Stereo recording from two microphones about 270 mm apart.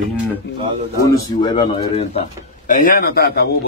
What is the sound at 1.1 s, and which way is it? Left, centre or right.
Speech, centre.